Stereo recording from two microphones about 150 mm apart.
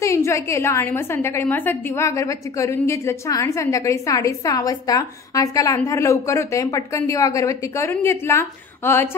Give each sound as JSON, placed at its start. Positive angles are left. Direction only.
{"t": 0.0, "sound": "a woman's voice", "side_deg": 20}